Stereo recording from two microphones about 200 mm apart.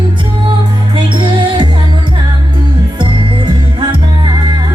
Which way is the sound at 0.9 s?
25° right (ahead or behind).